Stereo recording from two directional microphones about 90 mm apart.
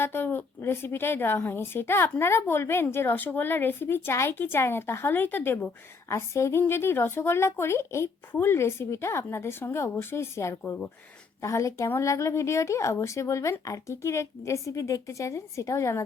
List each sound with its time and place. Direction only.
0.0 s a woman's voice: 25° left (ahead or behind)
10.6 s a woman's voice: 20° left (ahead or behind)
11.4 s speech: 35° left (ahead or behind)